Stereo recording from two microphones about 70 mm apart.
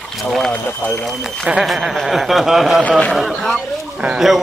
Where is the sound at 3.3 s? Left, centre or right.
Centre.